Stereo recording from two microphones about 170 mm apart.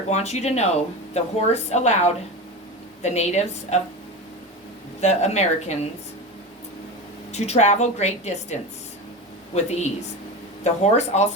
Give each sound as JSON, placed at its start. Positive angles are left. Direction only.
{"t": 0.1, "sound": "a woman's voice", "side_deg": 40}
{"t": 4.9, "sound": "a woman's voice", "side_deg": 40}
{"t": 7.3, "sound": "a woman's voice", "side_deg": 40}
{"t": 9.6, "sound": "a woman's voice", "side_deg": 40}